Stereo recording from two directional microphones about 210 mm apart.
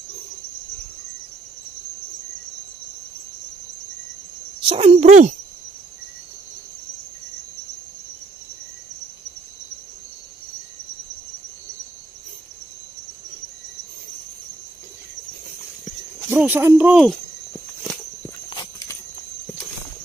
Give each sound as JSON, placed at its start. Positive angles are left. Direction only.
{"t": 4.6, "sound": "a child's voice", "side_deg": -25}
{"t": 16.3, "sound": "speech", "side_deg": -10}
{"t": 18.5, "sound": "horse", "side_deg": 20}